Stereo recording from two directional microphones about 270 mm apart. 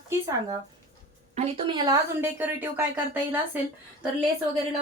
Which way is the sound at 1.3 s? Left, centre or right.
Right.